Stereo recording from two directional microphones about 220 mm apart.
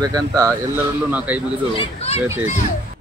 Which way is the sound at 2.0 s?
30° left (ahead or behind).